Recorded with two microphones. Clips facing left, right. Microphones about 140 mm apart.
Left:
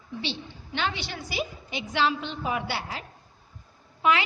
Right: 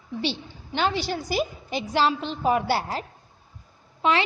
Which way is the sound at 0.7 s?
40° right (ahead or behind).